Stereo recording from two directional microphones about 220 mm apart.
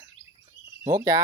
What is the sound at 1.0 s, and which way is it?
Speech, 15° right (ahead or behind).